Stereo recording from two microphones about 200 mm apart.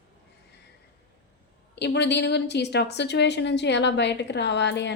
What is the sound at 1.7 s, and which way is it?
A woman's voice, 55° left (ahead or behind).